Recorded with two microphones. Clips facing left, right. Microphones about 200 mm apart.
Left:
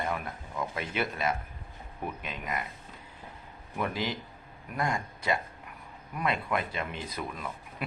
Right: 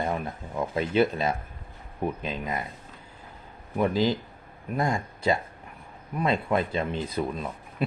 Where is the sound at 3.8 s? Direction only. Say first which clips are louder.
Right 8 dB; 30° right (ahead or behind).